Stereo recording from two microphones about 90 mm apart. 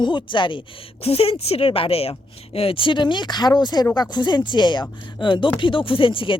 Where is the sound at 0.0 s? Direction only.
60° left (ahead or behind).